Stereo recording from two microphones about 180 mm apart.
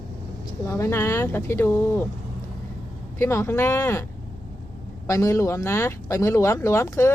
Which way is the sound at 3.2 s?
15° left (ahead or behind).